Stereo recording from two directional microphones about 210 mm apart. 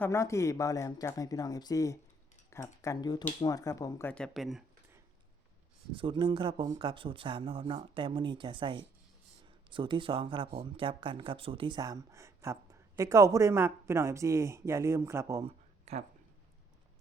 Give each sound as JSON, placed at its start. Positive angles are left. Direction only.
{"t": 0.0, "sound": "speech", "side_deg": 15}
{"t": 5.9, "sound": "speech", "side_deg": -25}
{"t": 15.4, "sound": "a sound", "side_deg": -30}